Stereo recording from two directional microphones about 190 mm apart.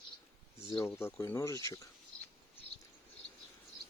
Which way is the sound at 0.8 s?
15° left (ahead or behind).